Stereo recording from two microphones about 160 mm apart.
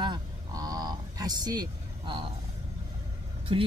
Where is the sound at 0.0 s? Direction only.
25° right (ahead or behind).